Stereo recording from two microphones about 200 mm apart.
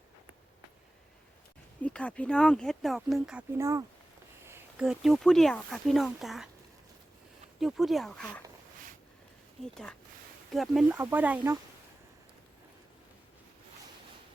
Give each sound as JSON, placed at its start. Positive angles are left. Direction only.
{"t": 1.8, "sound": "speech", "side_deg": 5}
{"t": 3.6, "sound": "speech", "side_deg": -15}
{"t": 7.6, "sound": "speech", "side_deg": 0}
{"t": 9.7, "sound": "speech", "side_deg": 5}